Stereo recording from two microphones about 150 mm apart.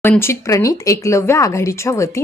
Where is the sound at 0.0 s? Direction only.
15° left (ahead or behind).